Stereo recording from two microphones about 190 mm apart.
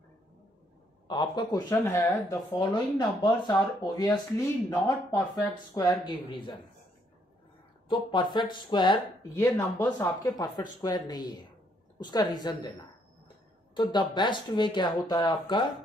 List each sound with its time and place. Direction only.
1.0 s speech: 25° left (ahead or behind)
2.5 s speech: 25° left (ahead or behind)
7.9 s speech: 25° left (ahead or behind)
9.3 s speech: 10° left (ahead or behind)
13.7 s speech: 25° left (ahead or behind)